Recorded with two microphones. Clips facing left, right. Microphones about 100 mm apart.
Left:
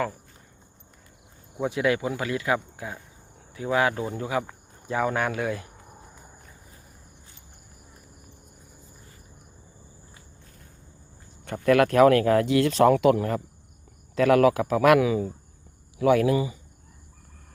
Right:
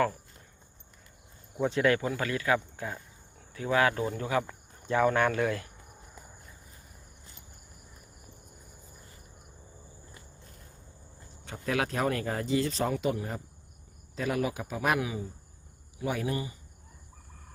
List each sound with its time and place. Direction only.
1.6 s speech: 10° left (ahead or behind)
11.4 s speech: 60° left (ahead or behind); by 16.3 s 90° left